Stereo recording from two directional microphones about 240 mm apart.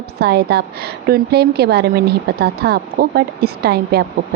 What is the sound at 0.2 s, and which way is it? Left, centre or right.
A woman's voice, right.